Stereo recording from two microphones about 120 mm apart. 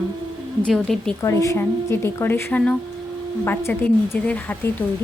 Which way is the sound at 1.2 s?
25° left (ahead or behind).